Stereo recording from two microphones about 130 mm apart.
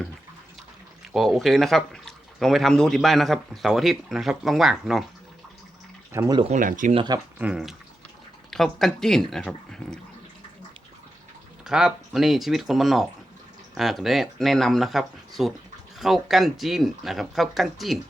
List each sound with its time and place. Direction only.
1.1 s speech: centre (ahead or behind)
6.1 s speech: 25° right (ahead or behind)
6.5 s speech: 90° right
6.9 s speech: 35° right (ahead or behind)
7.3 s speech: 10° right (ahead or behind); by 10.0 s 5° left (ahead or behind)
11.6 s speech: 5° right (ahead or behind)